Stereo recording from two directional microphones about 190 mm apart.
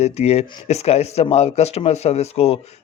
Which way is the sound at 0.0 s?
35° left (ahead or behind).